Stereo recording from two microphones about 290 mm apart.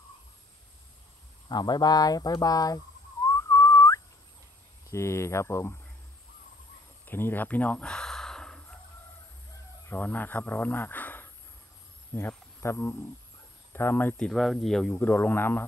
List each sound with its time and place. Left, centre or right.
1.5 s speech: centre
3.3 s whistling: centre
4.8 s speech: centre
7.1 s a sound: centre
9.8 s speech: centre